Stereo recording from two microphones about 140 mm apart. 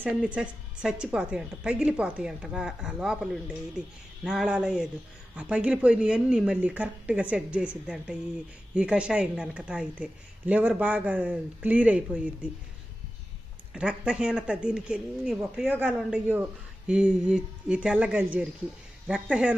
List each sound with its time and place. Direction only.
0.0 s speech: 10° right (ahead or behind)
13.7 s speech: 5° right (ahead or behind)